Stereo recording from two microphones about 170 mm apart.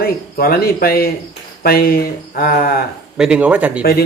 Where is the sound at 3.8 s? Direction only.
65° left (ahead or behind).